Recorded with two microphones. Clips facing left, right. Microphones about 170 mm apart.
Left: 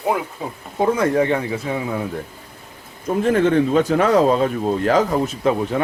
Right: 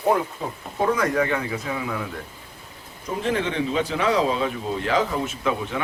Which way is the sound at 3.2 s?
50° left (ahead or behind).